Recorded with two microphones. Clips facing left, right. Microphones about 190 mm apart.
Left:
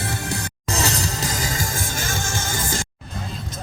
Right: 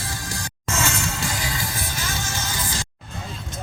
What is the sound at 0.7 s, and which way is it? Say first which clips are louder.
Music: left 2 dB; 35° left (ahead or behind).